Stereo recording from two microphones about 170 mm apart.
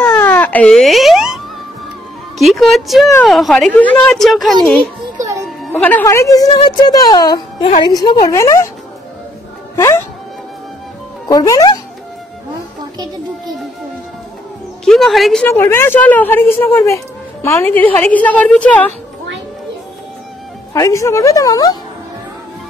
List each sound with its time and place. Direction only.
0.0 s a sound: 10° left (ahead or behind)
2.3 s a woman's voice: centre (ahead or behind)
5.1 s music: 20° right (ahead or behind)
5.7 s speech: 10° left (ahead or behind)
6.5 s speech: 35° left (ahead or behind)
6.9 s speech: 25° left (ahead or behind)
9.8 s speech: 15° left (ahead or behind)
11.2 s speech: 20° left (ahead or behind)
14.9 s a woman's voice: centre (ahead or behind)
15.4 s speech: 15° left (ahead or behind)
20.7 s speech: 20° left (ahead or behind)